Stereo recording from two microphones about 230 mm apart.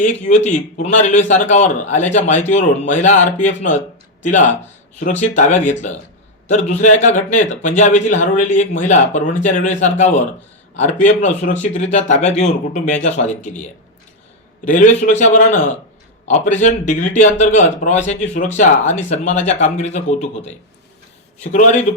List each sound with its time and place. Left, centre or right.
0.0 s a man's voice: left
14.6 s a man's voice: left